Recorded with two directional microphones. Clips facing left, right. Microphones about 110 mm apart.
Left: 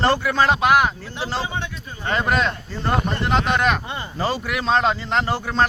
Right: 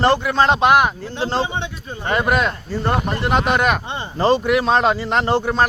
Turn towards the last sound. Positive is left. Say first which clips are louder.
# right 3 dB
turn(degrees=-15)  # may be behind; listen again after turning